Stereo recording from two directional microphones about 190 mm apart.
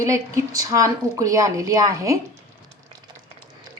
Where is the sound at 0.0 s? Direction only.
15° right (ahead or behind).